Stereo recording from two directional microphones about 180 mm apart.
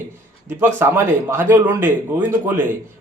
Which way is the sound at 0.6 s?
10° right (ahead or behind).